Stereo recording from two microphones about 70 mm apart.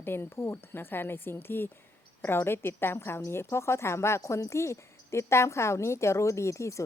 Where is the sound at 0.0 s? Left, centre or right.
Left.